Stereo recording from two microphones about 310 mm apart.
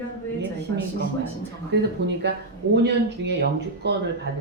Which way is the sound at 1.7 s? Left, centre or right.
Right.